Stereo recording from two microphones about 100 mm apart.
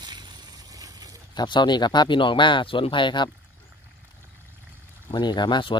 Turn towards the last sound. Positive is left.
turn(degrees=50)  # may be behind; listen again after turning